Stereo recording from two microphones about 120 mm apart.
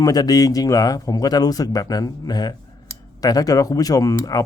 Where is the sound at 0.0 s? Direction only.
30° left (ahead or behind).